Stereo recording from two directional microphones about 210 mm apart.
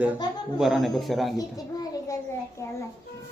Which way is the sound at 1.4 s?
15° left (ahead or behind).